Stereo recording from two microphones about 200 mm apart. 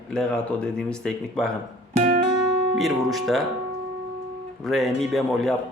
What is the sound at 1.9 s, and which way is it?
Music, 35° right (ahead or behind).